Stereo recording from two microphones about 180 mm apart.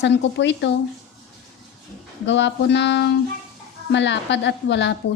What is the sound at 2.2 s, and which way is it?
A woman's voice, 85° left.